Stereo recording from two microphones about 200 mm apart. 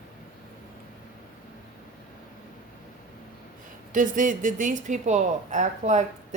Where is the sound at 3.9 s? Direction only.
40° right (ahead or behind).